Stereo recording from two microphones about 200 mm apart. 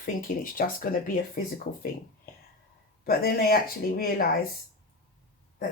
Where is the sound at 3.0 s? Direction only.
50° left (ahead or behind).